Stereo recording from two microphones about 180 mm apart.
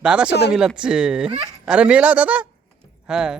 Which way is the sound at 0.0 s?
5° right (ahead or behind).